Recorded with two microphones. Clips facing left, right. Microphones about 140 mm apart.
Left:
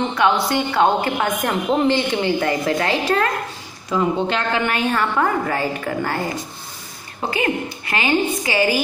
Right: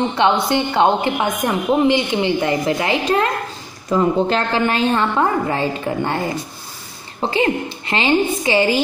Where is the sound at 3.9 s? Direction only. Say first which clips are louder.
Right 3 dB; 35° right (ahead or behind).